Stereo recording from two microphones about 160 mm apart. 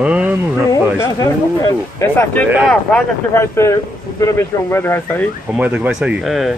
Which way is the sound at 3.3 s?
15° left (ahead or behind).